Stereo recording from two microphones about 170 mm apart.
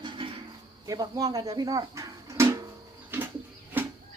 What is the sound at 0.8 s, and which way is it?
Speech, 20° right (ahead or behind).